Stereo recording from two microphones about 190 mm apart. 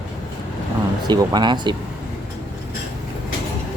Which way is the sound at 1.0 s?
20° right (ahead or behind).